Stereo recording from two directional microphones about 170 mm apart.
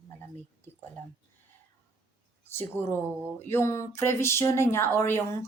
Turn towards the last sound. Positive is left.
turn(degrees=15)  # may be behind; listen again after turning